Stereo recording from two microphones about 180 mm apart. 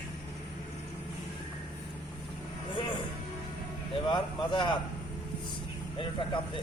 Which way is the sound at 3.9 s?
25° left (ahead or behind).